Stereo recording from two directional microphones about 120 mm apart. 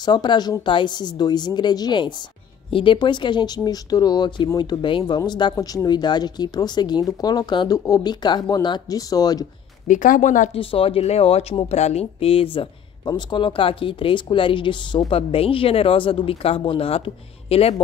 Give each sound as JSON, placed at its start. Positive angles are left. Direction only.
{"t": 0.0, "sound": "speech", "side_deg": 35}
{"t": 9.8, "sound": "a woman's voice", "side_deg": 90}
{"t": 10.6, "sound": "speech", "side_deg": 50}